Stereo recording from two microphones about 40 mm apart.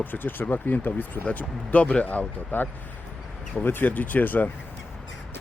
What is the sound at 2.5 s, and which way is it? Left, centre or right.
Speech, left.